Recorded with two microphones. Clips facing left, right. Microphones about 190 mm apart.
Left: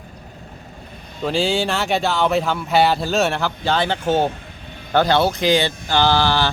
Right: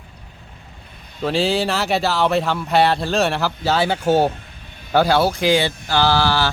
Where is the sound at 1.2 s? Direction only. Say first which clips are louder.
Right 1 dB; centre (ahead or behind).